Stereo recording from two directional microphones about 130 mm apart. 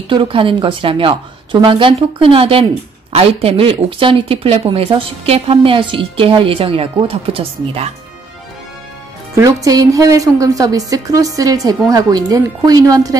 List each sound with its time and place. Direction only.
0.1 s a woman's voice: 40° right (ahead or behind)
9.3 s a woman's voice: 25° right (ahead or behind)